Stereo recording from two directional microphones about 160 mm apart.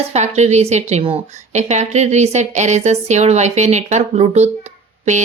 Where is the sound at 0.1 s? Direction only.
45° right (ahead or behind).